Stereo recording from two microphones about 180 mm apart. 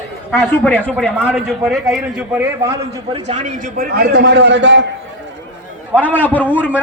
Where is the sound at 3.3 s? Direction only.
40° right (ahead or behind); by 4.8 s 80° right.